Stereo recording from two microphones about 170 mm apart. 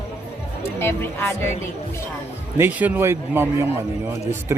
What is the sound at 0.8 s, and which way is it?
Speech, 15° left (ahead or behind).